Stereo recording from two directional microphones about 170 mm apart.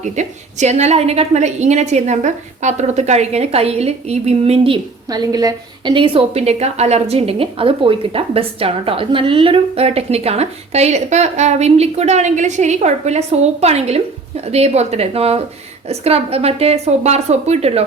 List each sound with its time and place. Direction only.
0.0 s a woman's voice: 45° right (ahead or behind)